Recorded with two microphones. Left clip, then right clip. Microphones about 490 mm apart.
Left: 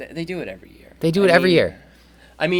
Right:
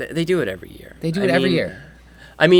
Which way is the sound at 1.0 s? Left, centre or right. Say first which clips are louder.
Left 4 dB; left.